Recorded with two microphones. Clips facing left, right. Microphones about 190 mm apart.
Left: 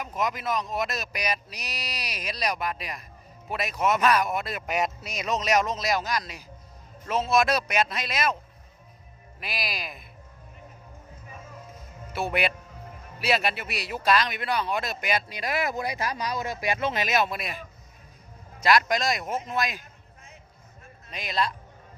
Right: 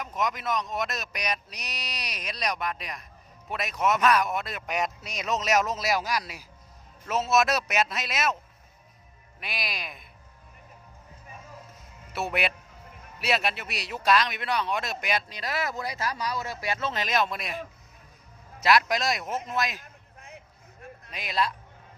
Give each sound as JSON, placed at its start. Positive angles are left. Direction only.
{"t": 0.0, "sound": "speech", "side_deg": 5}
{"t": 9.4, "sound": "speech", "side_deg": 0}
{"t": 12.1, "sound": "speech", "side_deg": 0}
{"t": 15.4, "sound": "speech", "side_deg": 15}
{"t": 21.1, "sound": "speech", "side_deg": 0}